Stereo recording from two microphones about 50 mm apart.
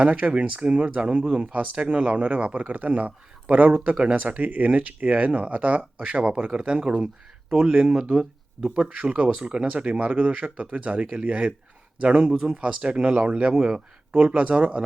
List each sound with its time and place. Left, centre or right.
0.0 s speech: right
2.6 s speech: right
7.9 s speech: centre
8.9 s speech: right
13.5 s speech: centre
14.3 s speech: right